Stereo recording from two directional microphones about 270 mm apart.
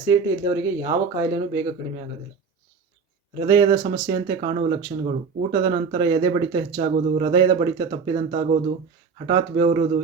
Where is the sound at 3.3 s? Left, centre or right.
Centre.